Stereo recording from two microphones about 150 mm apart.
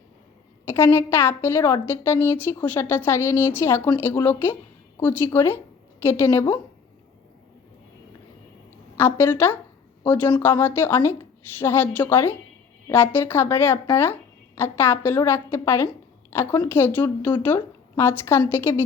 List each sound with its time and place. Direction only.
0.6 s a woman's voice: 15° left (ahead or behind)
9.0 s a woman's voice: 15° left (ahead or behind)